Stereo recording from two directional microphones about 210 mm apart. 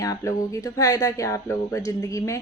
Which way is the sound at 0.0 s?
15° left (ahead or behind).